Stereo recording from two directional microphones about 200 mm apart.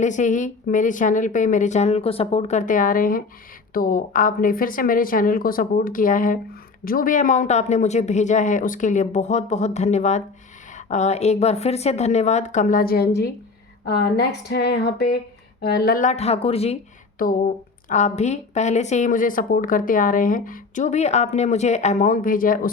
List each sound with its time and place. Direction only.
0.0 s speech: 40° left (ahead or behind)
17.2 s speech: 45° left (ahead or behind)